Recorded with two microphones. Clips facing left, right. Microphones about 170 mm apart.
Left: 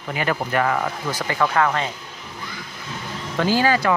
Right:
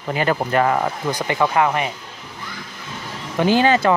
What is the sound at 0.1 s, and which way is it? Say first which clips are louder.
Speech: right 4 dB; 30° right (ahead or behind).